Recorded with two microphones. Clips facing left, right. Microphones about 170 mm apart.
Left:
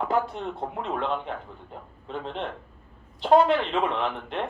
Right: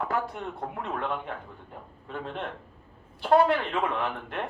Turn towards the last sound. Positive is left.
turn(degrees=20)  # may be behind; listen again after turning